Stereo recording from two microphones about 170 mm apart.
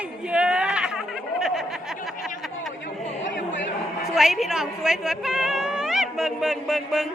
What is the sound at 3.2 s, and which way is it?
Chatter, 90° left.